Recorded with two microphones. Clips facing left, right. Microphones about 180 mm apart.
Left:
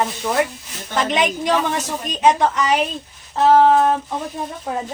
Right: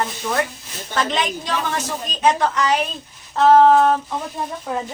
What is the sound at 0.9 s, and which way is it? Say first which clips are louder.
A woman's voice: left 3 dB; 15° left (ahead or behind).